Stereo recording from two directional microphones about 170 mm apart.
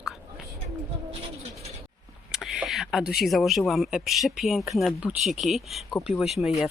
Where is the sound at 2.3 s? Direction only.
5° right (ahead or behind).